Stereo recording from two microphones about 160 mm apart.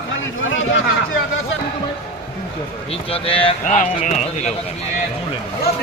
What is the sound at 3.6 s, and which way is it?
Speech, 55° left (ahead or behind).